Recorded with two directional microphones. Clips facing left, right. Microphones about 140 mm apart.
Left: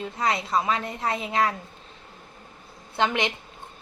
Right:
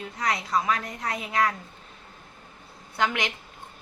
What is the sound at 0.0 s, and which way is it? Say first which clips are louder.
A woman's voice: left 3 dB; 25° left (ahead or behind).